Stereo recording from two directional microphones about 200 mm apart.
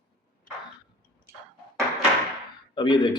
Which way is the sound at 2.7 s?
25° left (ahead or behind).